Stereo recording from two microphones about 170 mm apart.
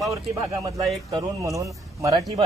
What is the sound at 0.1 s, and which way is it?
Speech, 20° right (ahead or behind).